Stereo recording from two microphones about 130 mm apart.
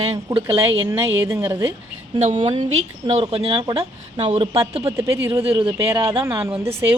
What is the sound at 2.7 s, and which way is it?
A woman's voice, 55° right (ahead or behind).